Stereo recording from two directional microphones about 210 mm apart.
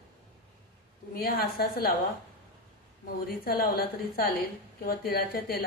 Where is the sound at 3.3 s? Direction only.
45° left (ahead or behind).